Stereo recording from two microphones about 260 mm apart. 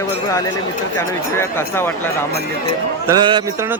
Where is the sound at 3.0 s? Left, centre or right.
Centre.